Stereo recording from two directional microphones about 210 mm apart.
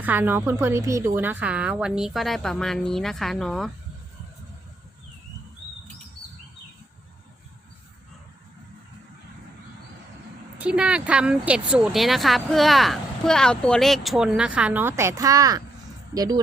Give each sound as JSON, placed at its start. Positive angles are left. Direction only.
{"t": 0.0, "sound": "speech", "side_deg": -10}
{"t": 10.6, "sound": "speech", "side_deg": -5}